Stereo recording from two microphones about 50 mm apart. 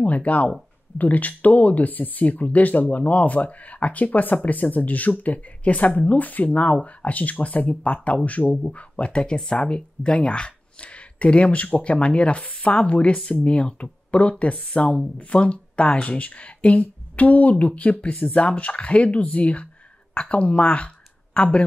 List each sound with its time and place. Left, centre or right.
0.0 s speech: left